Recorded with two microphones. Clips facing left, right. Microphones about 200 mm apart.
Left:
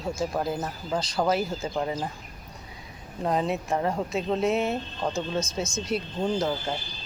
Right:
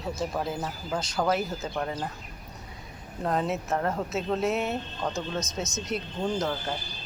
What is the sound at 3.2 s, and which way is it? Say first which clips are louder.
Speech: left 2 dB; centre (ahead or behind).